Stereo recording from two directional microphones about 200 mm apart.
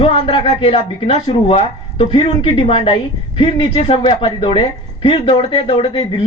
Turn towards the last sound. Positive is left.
turn(degrees=25)  # may be behind; listen again after turning